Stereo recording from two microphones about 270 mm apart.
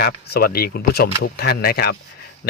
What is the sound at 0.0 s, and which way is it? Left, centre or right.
Speech, left.